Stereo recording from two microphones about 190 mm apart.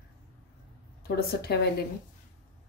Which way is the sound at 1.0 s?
55° left (ahead or behind).